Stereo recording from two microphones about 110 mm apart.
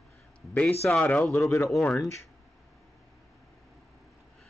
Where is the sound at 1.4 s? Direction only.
25° left (ahead or behind).